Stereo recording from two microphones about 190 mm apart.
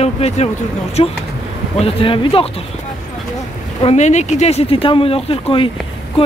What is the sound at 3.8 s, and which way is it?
Speech, 35° left (ahead or behind).